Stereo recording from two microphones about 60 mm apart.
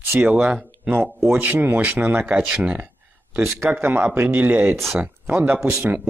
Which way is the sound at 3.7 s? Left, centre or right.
Right.